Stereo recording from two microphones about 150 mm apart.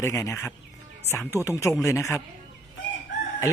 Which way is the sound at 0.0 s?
20° left (ahead or behind).